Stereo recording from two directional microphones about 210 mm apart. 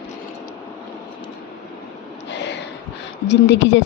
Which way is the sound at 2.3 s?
55° left (ahead or behind).